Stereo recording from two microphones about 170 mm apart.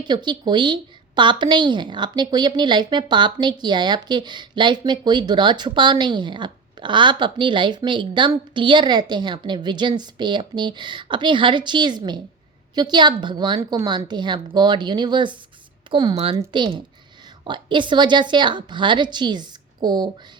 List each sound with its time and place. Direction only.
0.0 s a woman's voice: 25° right (ahead or behind)